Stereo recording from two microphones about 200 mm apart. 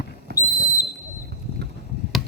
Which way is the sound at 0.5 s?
15° left (ahead or behind).